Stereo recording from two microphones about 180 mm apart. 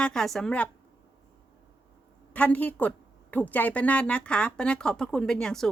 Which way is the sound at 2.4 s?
10° left (ahead or behind).